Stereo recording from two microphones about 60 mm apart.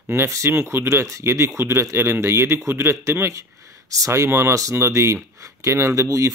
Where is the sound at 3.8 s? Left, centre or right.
Right.